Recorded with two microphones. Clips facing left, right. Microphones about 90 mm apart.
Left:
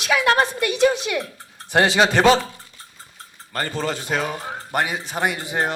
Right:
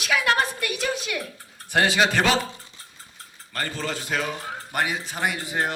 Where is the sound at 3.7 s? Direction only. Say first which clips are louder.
Left 4 dB; 25° left (ahead or behind).